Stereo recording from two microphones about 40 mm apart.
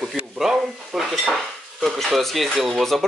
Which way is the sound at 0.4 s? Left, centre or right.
Centre.